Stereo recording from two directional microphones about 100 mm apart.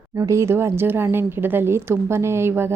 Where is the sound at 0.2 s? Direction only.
30° right (ahead or behind).